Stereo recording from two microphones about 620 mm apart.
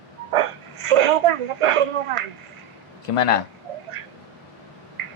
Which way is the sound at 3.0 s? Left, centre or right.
Left.